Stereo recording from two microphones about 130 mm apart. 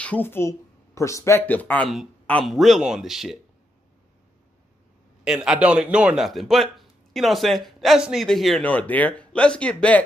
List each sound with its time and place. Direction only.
0.0 s speech: 15° left (ahead or behind)
2.4 s a man's voice: centre (ahead or behind)
5.2 s a man's voice: 5° right (ahead or behind)